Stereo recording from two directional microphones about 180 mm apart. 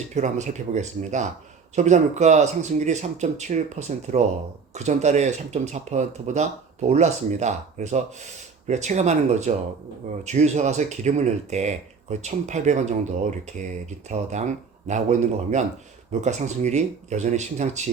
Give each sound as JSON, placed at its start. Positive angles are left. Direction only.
{"t": 0.1, "sound": "speech", "side_deg": -40}